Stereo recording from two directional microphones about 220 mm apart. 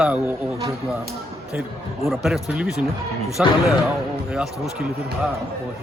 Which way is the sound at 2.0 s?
Centre (ahead or behind).